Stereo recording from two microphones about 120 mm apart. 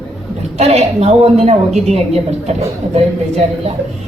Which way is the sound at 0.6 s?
60° right (ahead or behind).